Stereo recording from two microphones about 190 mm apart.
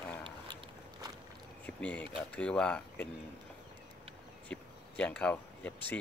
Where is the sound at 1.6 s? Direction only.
5° left (ahead or behind).